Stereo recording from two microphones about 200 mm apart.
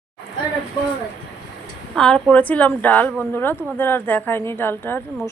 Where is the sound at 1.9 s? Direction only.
5° left (ahead or behind).